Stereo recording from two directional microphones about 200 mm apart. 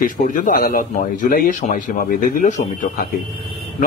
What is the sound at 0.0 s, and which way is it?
Speech, 40° left (ahead or behind).